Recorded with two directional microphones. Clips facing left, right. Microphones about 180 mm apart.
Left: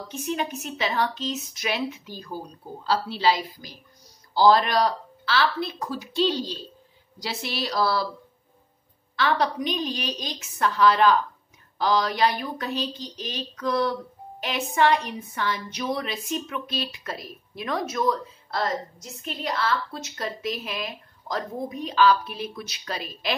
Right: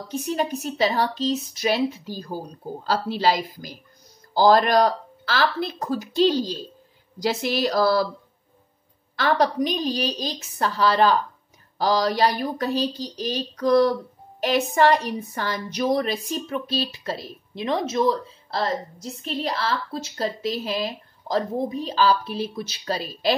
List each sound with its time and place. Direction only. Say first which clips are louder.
0.1 s a woman's voice: right 4 dB; 35° right (ahead or behind)
9.1 s a woman's voice: right 3 dB; 45° right (ahead or behind)